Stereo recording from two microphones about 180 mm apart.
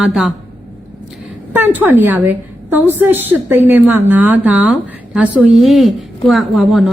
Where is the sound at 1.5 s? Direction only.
10° right (ahead or behind).